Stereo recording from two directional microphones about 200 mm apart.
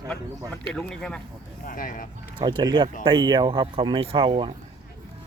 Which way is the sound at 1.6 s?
45° left (ahead or behind).